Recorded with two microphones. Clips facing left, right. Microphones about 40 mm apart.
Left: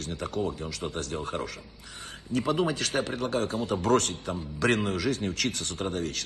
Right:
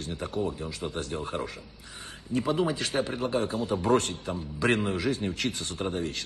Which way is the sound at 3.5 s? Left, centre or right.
Left.